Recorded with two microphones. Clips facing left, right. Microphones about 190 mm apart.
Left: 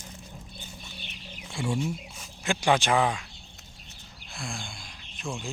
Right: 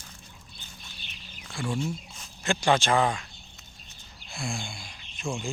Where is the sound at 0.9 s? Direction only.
60° left (ahead or behind).